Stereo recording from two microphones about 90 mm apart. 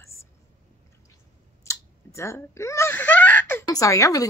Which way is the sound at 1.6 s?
35° left (ahead or behind).